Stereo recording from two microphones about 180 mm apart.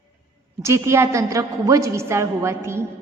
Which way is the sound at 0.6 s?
15° right (ahead or behind).